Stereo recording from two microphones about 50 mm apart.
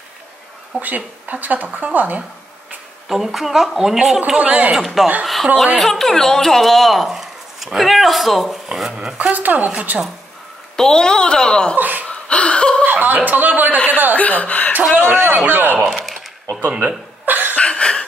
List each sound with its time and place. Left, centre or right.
0.7 s speech: right
3.1 s a woman's voice: centre
4.4 s speech: right
4.7 s speech: centre
8.7 s a woman's voice: centre
9.3 s speech: right
10.8 s a woman's voice: centre
11.7 s speech: right
12.1 s a sound: left
12.8 s speech: right
14.1 s speech: left
15.0 s speech: right
16.7 s chuckle: right
17.6 s a sound: left